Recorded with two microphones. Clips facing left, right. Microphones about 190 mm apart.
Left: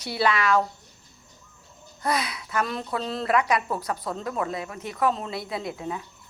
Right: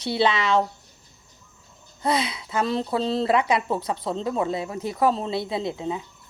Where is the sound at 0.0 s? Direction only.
25° right (ahead or behind).